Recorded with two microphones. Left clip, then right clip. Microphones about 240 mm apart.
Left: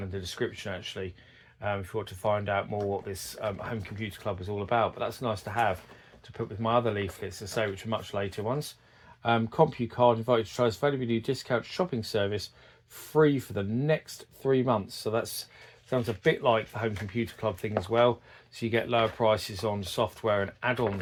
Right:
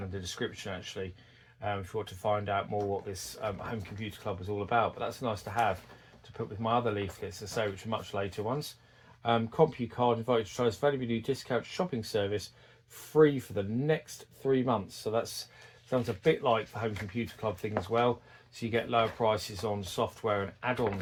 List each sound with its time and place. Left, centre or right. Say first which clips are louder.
0.1 s speech: left 5 dB; left